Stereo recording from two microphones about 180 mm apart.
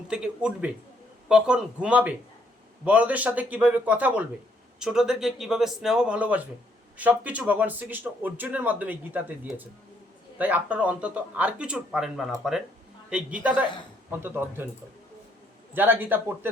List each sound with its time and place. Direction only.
0.1 s a man's voice: 5° right (ahead or behind)
15.7 s a man's voice: 10° right (ahead or behind)